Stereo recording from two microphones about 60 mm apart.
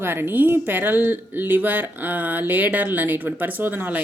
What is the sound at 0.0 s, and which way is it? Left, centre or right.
Speech, right.